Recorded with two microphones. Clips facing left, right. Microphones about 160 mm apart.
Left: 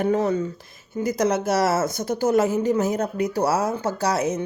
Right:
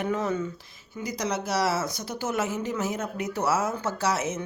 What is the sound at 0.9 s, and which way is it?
Speech, 50° left (ahead or behind).